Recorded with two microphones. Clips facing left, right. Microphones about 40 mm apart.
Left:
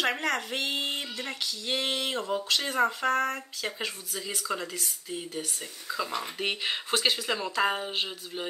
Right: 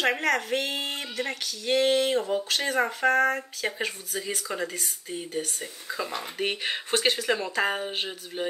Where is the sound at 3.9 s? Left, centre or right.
Centre.